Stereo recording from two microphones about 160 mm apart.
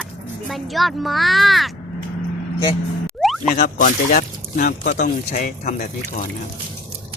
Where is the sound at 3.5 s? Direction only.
60° left (ahead or behind).